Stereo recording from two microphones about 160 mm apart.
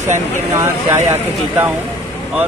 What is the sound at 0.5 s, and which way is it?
Speech, 20° right (ahead or behind).